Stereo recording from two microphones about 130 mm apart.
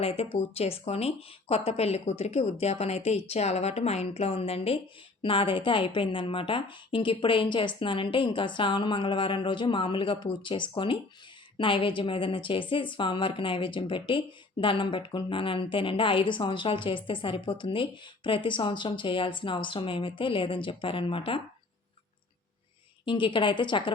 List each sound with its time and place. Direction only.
0.0 s a woman's voice: 50° left (ahead or behind)
23.0 s a woman's voice: 40° left (ahead or behind)